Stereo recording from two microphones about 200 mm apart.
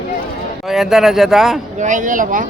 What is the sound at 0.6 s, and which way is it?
Speech, centre (ahead or behind).